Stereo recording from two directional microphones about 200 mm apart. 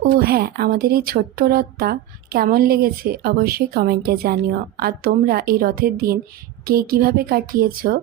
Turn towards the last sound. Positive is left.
turn(degrees=-45)  # may be behind; listen again after turning